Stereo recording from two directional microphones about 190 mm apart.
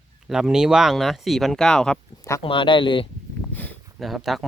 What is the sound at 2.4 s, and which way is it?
Speech, 25° left (ahead or behind).